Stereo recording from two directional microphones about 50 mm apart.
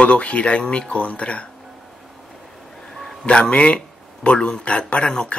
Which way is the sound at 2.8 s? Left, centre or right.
Centre.